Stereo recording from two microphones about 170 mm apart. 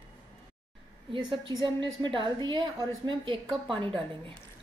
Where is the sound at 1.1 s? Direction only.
30° right (ahead or behind).